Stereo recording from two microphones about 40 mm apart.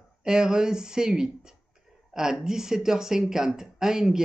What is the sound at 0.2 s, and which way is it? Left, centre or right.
Speech, centre.